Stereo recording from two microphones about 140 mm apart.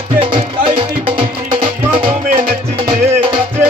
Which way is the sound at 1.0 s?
40° right (ahead or behind).